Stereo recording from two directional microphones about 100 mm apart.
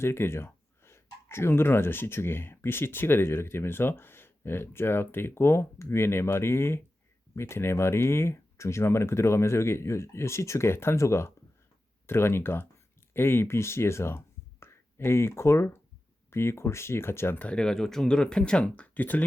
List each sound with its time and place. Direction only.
0.0 s speech: 25° left (ahead or behind)